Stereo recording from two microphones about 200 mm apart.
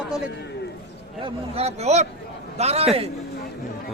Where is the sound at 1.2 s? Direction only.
30° right (ahead or behind).